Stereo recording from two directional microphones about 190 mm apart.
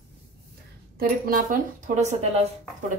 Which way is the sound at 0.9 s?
50° right (ahead or behind).